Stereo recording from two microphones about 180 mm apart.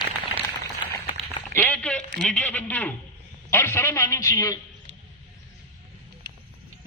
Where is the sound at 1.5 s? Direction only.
10° left (ahead or behind).